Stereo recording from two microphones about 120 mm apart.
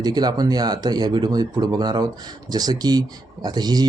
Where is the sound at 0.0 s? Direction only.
35° right (ahead or behind).